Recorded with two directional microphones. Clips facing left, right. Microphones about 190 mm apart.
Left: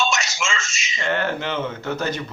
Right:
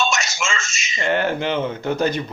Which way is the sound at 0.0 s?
50° right (ahead or behind).